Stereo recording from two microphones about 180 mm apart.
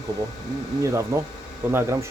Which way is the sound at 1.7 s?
15° right (ahead or behind).